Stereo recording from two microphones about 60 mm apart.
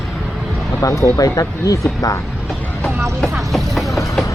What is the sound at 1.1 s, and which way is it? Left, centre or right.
Speech, left.